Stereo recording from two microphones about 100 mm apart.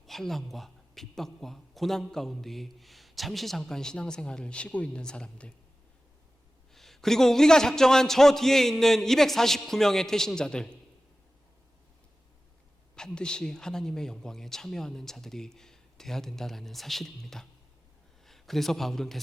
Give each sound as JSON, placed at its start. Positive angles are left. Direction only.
{"t": 0.0, "sound": "a man's voice", "side_deg": 0}
{"t": 6.7, "sound": "a man's voice", "side_deg": 5}
{"t": 13.0, "sound": "a man's voice", "side_deg": 10}